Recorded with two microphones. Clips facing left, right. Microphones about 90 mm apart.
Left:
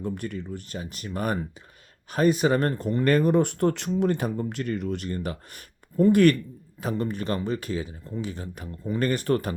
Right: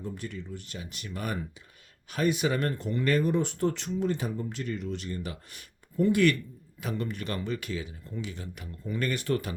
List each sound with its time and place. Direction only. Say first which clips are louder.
0.0 s speech: left 6 dB; 55° left (ahead or behind)
6.8 s speech: left 6 dB; 35° left (ahead or behind)